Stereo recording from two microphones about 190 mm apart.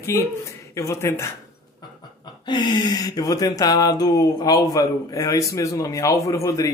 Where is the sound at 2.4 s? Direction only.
25° left (ahead or behind).